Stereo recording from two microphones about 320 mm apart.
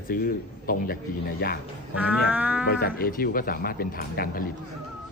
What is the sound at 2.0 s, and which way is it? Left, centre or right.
Speech, centre.